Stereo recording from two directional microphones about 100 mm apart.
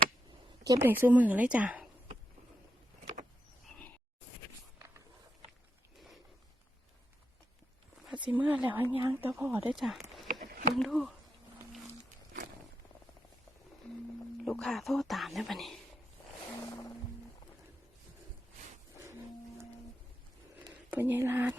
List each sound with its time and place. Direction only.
0.6 s speech: 35° right (ahead or behind)
0.9 s a woman's voice: 15° right (ahead or behind)
8.1 s speech: 15° right (ahead or behind)
9.7 s speech: centre (ahead or behind)
14.3 s speech: 5° left (ahead or behind)
20.6 s a sound: 20° right (ahead or behind)